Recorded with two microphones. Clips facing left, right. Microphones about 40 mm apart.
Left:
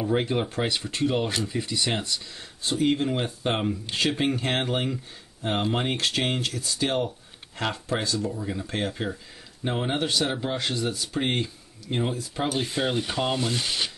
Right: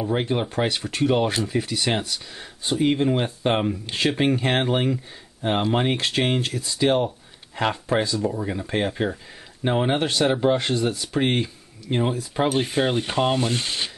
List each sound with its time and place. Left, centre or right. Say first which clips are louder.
0.2 s speech: right 3 dB; centre
10.0 s speech: right 6 dB; right
12.1 s speech: right 5 dB; right